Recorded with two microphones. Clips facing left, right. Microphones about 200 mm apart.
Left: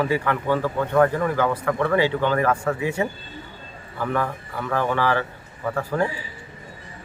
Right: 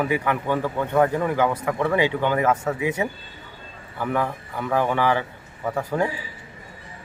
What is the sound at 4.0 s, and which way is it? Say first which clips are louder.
Speech: even; 15° right (ahead or behind).